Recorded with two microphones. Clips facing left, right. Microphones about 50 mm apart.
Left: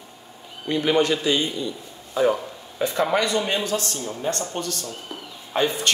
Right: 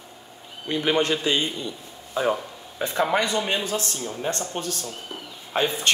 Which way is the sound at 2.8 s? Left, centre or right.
Right.